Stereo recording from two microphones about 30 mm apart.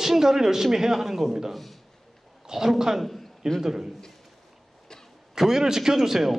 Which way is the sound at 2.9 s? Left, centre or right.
Centre.